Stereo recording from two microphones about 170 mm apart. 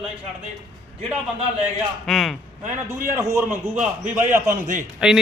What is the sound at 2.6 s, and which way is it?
Speech, 45° right (ahead or behind).